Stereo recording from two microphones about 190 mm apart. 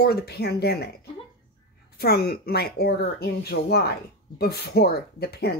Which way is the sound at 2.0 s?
55° left (ahead or behind).